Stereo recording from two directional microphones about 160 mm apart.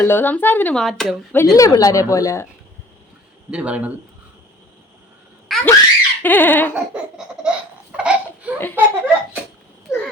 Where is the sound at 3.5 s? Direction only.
5° right (ahead or behind).